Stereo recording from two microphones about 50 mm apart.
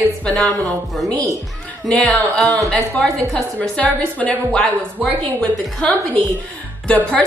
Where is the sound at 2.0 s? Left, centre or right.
Centre.